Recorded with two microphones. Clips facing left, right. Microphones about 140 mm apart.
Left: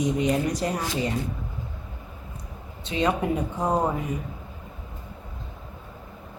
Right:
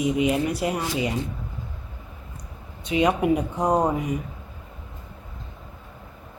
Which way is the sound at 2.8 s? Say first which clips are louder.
Right 4 dB; 15° right (ahead or behind).